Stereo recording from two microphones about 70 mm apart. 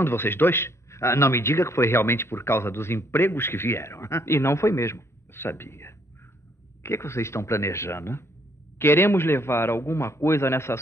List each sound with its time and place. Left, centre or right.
0.0 s a man's voice: left